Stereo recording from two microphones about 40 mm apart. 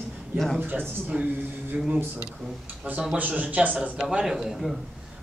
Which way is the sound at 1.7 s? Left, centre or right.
Right.